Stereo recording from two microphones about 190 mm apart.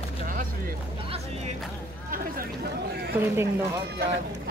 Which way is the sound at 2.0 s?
50° right (ahead or behind).